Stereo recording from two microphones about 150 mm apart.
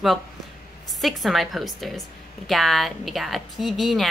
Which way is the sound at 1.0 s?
Centre (ahead or behind).